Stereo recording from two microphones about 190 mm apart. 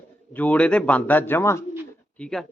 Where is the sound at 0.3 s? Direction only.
5° left (ahead or behind).